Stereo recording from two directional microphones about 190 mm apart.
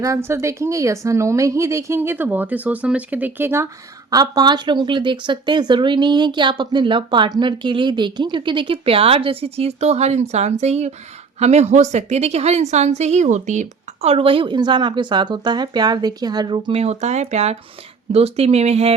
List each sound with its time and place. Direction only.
0.0 s a woman's voice: 15° right (ahead or behind); by 18.9 s 35° right (ahead or behind)